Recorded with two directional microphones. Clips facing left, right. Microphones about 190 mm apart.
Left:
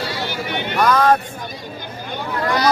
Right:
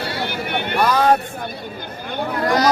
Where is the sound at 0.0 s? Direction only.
55° right (ahead or behind).